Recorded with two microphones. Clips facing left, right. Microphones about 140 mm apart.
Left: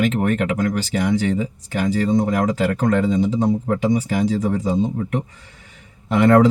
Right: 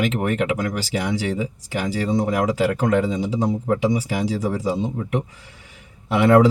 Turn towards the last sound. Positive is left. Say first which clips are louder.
# left 1 dB
turn(degrees=-5)  # may be behind; listen again after turning